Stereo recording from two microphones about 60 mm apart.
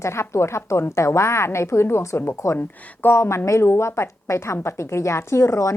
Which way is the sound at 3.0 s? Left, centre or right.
Left.